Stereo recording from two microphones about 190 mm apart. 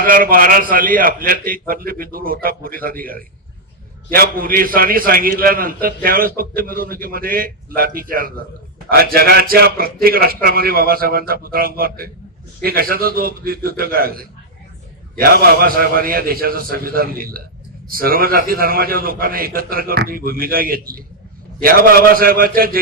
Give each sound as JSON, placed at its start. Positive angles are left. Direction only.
{"t": 0.0, "sound": "a man's voice", "side_deg": -50}